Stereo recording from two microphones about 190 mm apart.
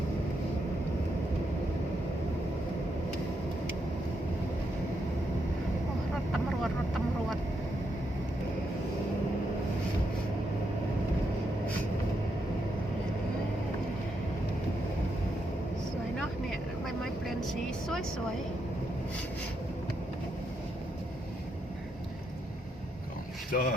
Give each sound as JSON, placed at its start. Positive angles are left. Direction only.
{"t": 17.0, "sound": "vehicle", "side_deg": 0}
{"t": 23.5, "sound": "speech", "side_deg": 50}